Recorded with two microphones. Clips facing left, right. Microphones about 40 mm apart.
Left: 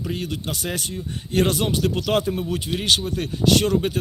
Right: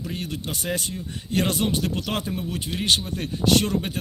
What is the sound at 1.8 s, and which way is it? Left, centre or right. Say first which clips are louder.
Speech: left 4 dB; centre.